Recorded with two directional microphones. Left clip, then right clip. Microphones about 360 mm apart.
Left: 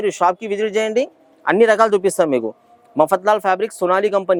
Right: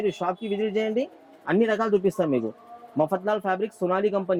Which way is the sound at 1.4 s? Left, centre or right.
Centre.